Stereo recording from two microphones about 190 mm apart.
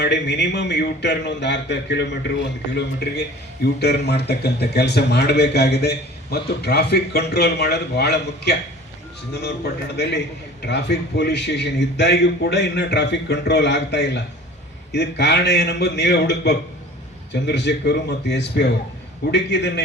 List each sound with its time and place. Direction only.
0.0 s a man's voice: 65° left (ahead or behind)